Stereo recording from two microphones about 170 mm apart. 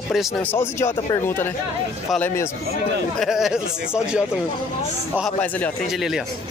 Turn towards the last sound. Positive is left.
turn(degrees=10)  # may be behind; listen again after turning